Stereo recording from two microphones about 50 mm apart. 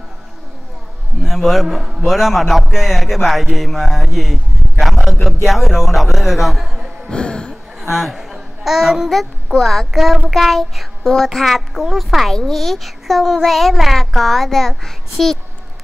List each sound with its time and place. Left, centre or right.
1.2 s a man's voice: centre
7.1 s speech: centre
7.9 s a child's voice: centre
9.6 s a man's voice: centre